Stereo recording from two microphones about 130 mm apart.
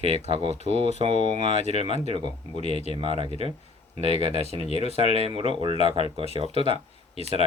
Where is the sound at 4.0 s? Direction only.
55° left (ahead or behind).